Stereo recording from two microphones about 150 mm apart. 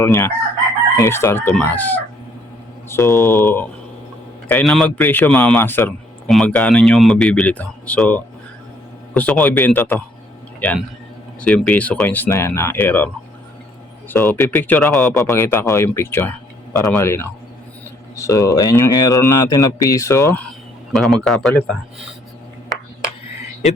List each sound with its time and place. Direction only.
0.0 s speech: 20° left (ahead or behind)
4.4 s speech: 5° left (ahead or behind)
6.2 s speech: 5° left (ahead or behind)
14.1 s speech: 15° left (ahead or behind)
20.9 s speech: centre (ahead or behind)